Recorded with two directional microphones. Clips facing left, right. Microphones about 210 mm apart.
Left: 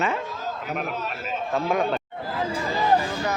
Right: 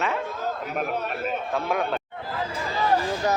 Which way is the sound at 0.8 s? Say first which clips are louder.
Right 3 dB; 55° right (ahead or behind).